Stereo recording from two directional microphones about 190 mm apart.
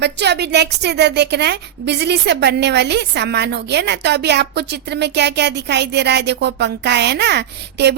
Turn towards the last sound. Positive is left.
turn(degrees=-60)  # may be behind; listen again after turning